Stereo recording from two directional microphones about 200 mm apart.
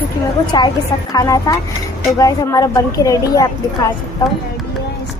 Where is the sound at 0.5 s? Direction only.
20° left (ahead or behind).